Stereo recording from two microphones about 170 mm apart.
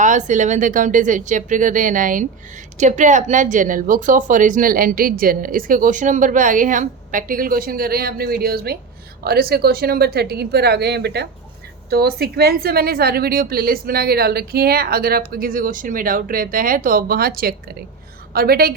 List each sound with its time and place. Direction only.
0.0 s a woman's voice: 45° right (ahead or behind); by 18.7 s 65° right (ahead or behind)